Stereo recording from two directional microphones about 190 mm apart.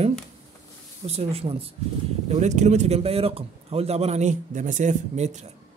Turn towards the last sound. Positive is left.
turn(degrees=-40)  # may be behind; listen again after turning